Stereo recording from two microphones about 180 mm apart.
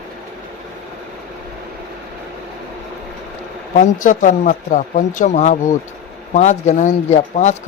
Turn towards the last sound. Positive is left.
turn(degrees=40)  # may be behind; listen again after turning